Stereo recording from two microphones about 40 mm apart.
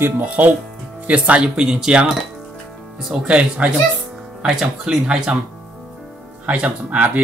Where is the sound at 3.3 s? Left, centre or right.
Right.